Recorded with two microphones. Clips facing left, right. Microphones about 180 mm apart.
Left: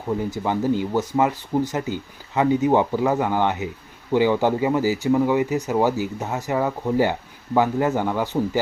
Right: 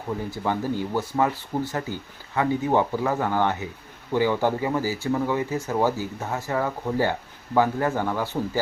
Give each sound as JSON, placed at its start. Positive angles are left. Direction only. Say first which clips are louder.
{"t": 0.3, "sound": "speech", "louder": "left 3 dB", "side_deg": 15}